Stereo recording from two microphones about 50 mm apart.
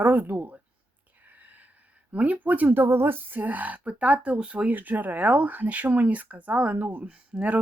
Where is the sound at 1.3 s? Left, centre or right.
Right.